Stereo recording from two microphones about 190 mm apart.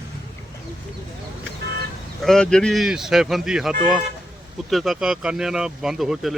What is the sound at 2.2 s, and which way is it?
Speech, centre (ahead or behind).